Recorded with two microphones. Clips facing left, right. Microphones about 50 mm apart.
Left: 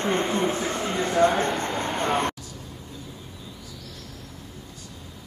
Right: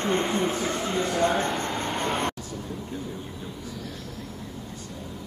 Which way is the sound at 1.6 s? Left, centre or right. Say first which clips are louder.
Left 1 dB; centre.